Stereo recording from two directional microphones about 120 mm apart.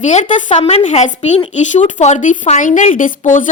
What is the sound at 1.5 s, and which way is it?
A woman's voice, 85° left.